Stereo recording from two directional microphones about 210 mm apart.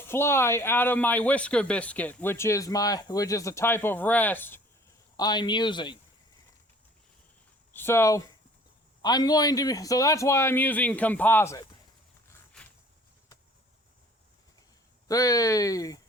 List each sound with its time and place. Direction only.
0.0 s speech: 10° left (ahead or behind)
7.7 s speech: 10° left (ahead or behind)
15.0 s speech: 15° left (ahead or behind)